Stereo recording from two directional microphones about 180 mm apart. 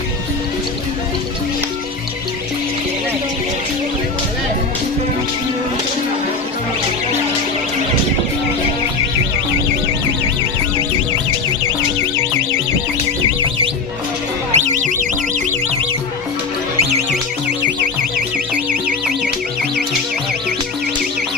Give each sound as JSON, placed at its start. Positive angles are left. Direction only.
{"t": 14.5, "sound": "music", "side_deg": -40}